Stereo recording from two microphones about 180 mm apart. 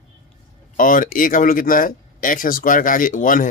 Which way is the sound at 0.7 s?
50° left (ahead or behind).